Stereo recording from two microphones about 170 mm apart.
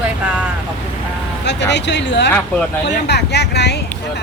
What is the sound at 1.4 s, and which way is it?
Speech, 90° left.